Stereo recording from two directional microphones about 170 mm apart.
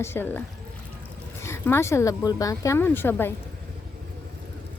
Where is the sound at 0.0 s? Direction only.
15° left (ahead or behind).